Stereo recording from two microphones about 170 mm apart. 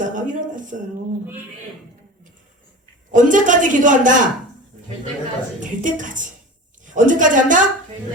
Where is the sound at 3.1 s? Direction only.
50° right (ahead or behind).